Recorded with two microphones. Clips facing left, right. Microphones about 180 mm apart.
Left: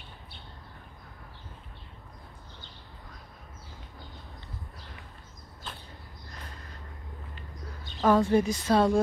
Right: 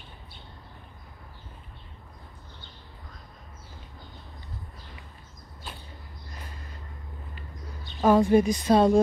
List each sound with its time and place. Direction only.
8.0 s a woman's voice: 15° right (ahead or behind)